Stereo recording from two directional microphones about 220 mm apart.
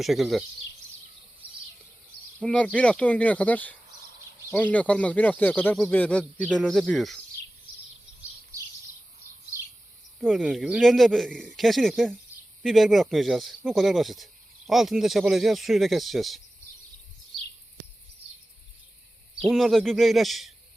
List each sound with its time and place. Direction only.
0.0 s speech: centre (ahead or behind)
2.4 s speech: 5° left (ahead or behind)
10.2 s speech: centre (ahead or behind)
19.4 s speech: centre (ahead or behind)